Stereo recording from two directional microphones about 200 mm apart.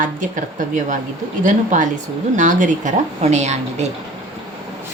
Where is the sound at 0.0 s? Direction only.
40° right (ahead or behind).